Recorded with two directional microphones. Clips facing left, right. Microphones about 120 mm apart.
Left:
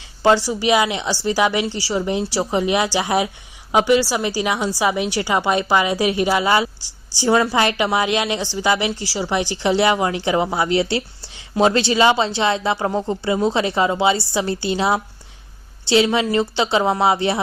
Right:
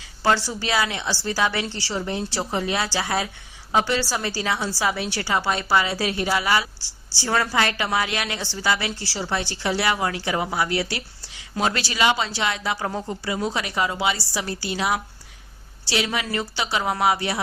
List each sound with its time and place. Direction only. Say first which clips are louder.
0.2 s a woman's voice: left 6 dB; 15° left (ahead or behind)